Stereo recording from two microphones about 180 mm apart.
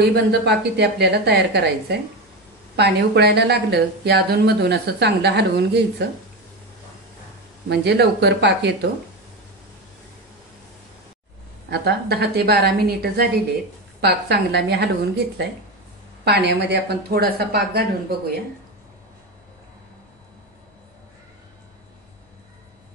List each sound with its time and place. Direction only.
0.1 s a woman's voice: 70° right (ahead or behind)
7.7 s a woman's voice: 65° right (ahead or behind)
11.7 s a woman's voice: 65° right (ahead or behind)